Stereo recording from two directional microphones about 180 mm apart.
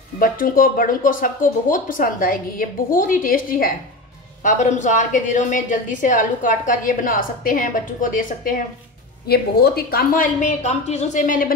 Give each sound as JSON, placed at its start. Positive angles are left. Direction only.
{"t": 0.2, "sound": "a woman's voice", "side_deg": 50}
{"t": 9.3, "sound": "a woman's voice", "side_deg": 60}